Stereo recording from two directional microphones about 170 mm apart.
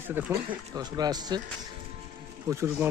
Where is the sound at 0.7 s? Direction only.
25° right (ahead or behind).